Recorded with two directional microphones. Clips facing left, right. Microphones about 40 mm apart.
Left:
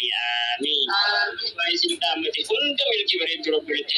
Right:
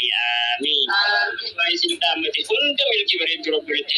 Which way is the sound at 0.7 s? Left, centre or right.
Right.